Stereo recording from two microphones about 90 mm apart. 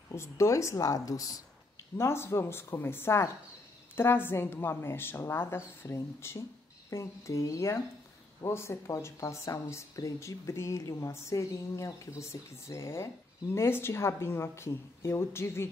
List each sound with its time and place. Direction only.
0.1 s speech: 30° left (ahead or behind)
2.0 s a woman's voice: 30° left (ahead or behind)